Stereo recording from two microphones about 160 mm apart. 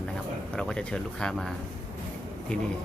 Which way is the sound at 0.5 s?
5° left (ahead or behind).